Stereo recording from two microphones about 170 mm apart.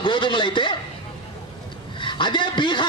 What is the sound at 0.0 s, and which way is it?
Speech, 30° left (ahead or behind).